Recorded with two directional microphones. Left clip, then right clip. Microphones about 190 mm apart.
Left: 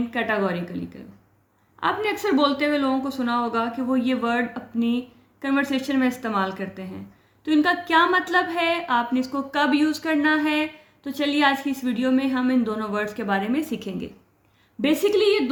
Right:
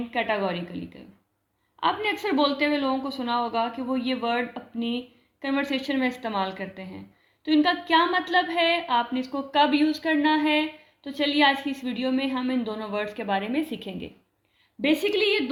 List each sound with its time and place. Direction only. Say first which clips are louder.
0.1 s a woman's voice: even; 30° left (ahead or behind)
1.8 s a woman's voice: left 2 dB; 30° left (ahead or behind)